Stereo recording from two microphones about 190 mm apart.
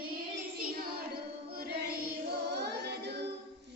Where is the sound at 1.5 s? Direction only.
55° right (ahead or behind).